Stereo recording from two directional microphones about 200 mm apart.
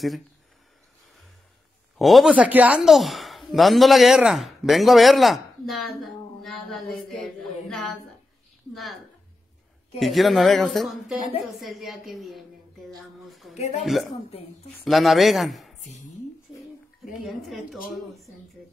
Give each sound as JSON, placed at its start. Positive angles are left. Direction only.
{"t": 2.0, "sound": "a woman's voice", "side_deg": 0}
{"t": 8.7, "sound": "a woman's voice", "side_deg": 0}
{"t": 13.3, "sound": "a sound", "side_deg": 0}
{"t": 13.6, "sound": "speech", "side_deg": 35}
{"t": 14.9, "sound": "a woman's voice", "side_deg": 0}
{"t": 17.2, "sound": "a woman's voice", "side_deg": 0}